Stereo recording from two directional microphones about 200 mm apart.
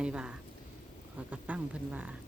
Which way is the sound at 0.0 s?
5° right (ahead or behind).